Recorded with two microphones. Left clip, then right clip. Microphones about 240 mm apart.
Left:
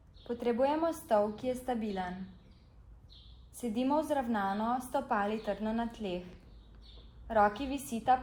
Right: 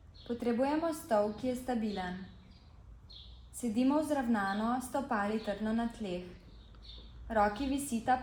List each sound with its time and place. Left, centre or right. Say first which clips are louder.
0.3 s a woman's voice: left 2 dB; left
3.6 s a woman's voice: even; left
7.3 s a woman's voice: left 2 dB; left